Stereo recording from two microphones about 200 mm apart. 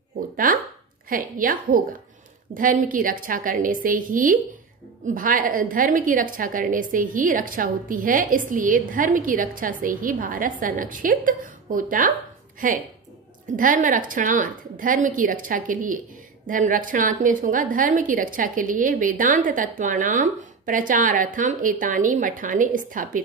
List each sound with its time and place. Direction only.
0.5 s a woman's voice: 45° right (ahead or behind)